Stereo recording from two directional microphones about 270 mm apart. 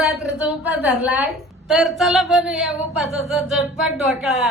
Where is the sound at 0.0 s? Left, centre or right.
Centre.